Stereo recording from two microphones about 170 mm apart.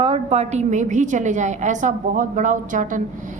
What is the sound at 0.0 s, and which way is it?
A woman's voice, 35° right (ahead or behind).